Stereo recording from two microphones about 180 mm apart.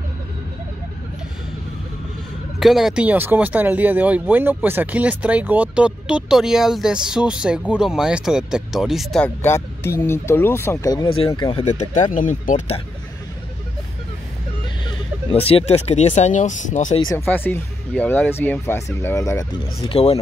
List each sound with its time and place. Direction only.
2.6 s speech: centre (ahead or behind); by 11.6 s 25° left (ahead or behind)
11.6 s speech: 40° left (ahead or behind)
14.9 s speech: 30° left (ahead or behind)
17.0 s speech: 20° left (ahead or behind)
19.8 s speech: 35° left (ahead or behind)